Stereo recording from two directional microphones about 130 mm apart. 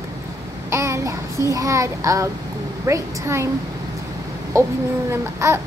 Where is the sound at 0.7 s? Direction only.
25° right (ahead or behind).